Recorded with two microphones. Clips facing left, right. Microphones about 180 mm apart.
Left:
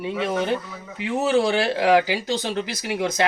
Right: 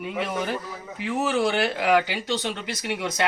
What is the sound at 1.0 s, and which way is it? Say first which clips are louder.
A man's voice: left 3 dB; 30° left (ahead or behind).